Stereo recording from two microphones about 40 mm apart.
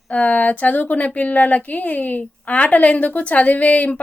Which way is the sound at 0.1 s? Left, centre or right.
Left.